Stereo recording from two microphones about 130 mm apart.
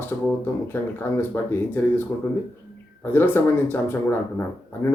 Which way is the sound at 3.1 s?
15° left (ahead or behind).